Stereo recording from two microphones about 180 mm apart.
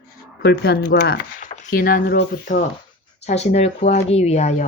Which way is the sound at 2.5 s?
45° left (ahead or behind).